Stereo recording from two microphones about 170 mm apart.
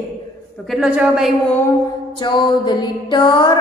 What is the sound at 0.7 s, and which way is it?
Speech, 5° right (ahead or behind).